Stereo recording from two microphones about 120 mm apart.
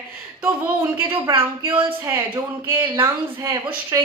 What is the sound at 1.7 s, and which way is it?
Speech, 50° right (ahead or behind).